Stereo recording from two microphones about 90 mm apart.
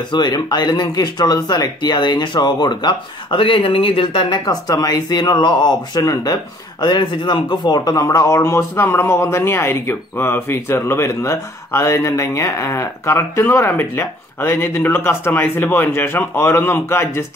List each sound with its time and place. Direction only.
0.1 s speech: 50° left (ahead or behind); by 4.4 s 65° left (ahead or behind)
4.5 s speech: 45° left (ahead or behind)
6.0 s a man's voice: 45° left (ahead or behind); by 17.2 s 25° left (ahead or behind)